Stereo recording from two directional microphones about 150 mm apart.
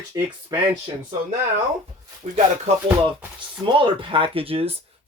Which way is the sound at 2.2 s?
45° right (ahead or behind).